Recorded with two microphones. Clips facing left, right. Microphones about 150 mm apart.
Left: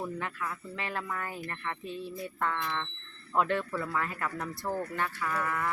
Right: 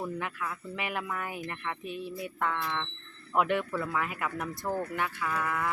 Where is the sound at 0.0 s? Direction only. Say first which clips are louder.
Right 1 dB; 5° right (ahead or behind).